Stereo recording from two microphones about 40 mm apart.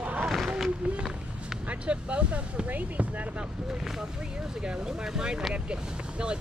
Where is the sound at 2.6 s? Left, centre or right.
Right.